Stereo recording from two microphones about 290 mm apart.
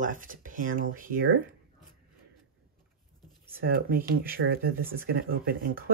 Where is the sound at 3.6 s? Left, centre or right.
Right.